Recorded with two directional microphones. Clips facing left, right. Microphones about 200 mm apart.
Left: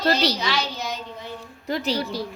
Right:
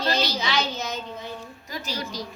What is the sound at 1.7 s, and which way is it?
Speech, 65° left (ahead or behind).